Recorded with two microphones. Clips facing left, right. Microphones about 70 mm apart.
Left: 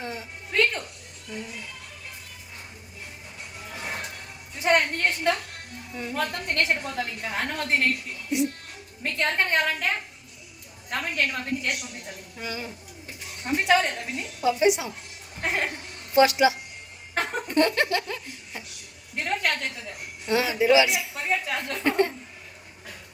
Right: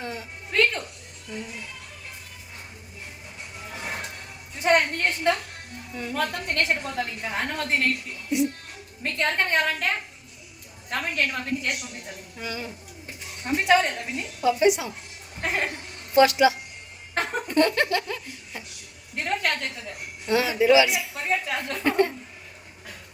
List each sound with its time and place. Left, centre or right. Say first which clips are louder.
0.0 s a sound: right 1 dB; centre
1.3 s speech: right 1 dB; centre
3.6 s music: even; centre
6.2 s a woman's voice: even; centre
15.4 s chuckle: even; centre
16.2 s speech: right 1 dB; centre
17.2 s laughter: right 1 dB; centre
19.1 s a sound: even; centre
19.7 s a woman's voice: right 1 dB; centre